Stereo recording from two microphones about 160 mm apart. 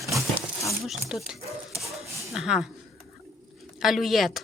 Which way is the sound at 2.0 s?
Centre (ahead or behind).